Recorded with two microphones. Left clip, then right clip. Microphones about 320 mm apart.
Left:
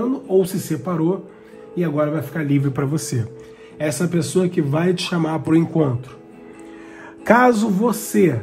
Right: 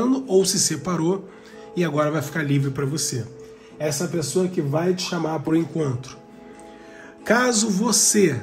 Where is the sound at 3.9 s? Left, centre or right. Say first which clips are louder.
Left 3 dB; left.